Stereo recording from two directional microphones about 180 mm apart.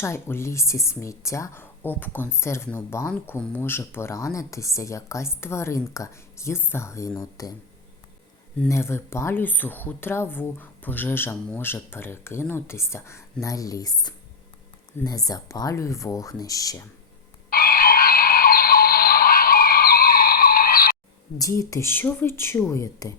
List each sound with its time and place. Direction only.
0.0 s speech: 15° left (ahead or behind)
8.5 s speech: 10° left (ahead or behind)
17.5 s a sound: 55° left (ahead or behind)
21.3 s speech: 20° left (ahead or behind)